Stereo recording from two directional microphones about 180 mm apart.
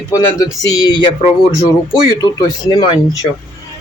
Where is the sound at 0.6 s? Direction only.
20° left (ahead or behind).